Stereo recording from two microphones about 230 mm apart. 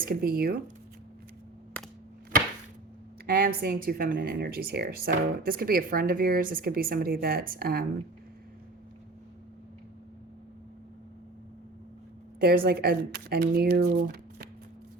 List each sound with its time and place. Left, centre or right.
0.0 s speech: right
1.7 s a sound: centre
3.2 s speech: right
12.4 s speech: right